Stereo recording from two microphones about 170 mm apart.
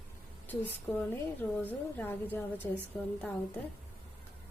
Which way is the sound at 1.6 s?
10° left (ahead or behind).